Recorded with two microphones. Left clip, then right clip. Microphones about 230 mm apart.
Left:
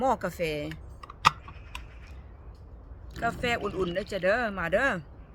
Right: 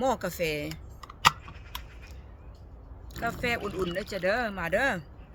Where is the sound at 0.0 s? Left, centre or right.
Centre.